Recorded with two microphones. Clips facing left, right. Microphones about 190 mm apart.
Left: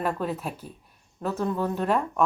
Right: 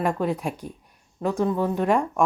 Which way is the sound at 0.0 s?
10° right (ahead or behind).